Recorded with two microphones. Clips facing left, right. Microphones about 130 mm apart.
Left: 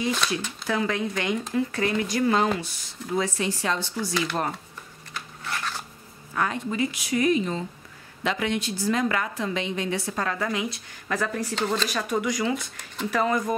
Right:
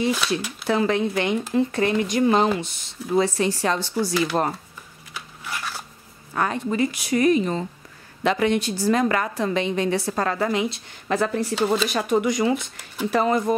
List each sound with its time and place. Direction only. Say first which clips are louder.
0.1 s speech: right 3 dB; 5° right (ahead or behind)
0.7 s speech: right 5 dB; 30° right (ahead or behind)
3.3 s a woman's voice: right 4 dB; 35° right (ahead or behind)
5.1 s a sound: even; 5° right (ahead or behind)
6.3 s a woman's voice: right 3 dB; 40° right (ahead or behind)
11.5 s speech: right 5 dB; 5° right (ahead or behind)
11.9 s speech: right 5 dB; 25° right (ahead or behind)